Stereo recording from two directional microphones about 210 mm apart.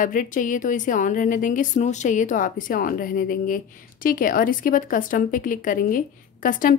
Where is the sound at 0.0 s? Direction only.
40° left (ahead or behind).